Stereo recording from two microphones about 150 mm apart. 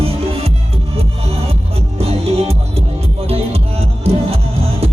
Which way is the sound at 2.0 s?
40° right (ahead or behind).